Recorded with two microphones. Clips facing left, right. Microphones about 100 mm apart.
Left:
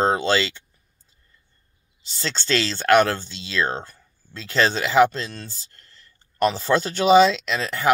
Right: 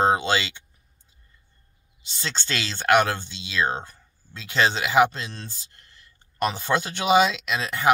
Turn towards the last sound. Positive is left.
turn(degrees=-15)  # may be behind; listen again after turning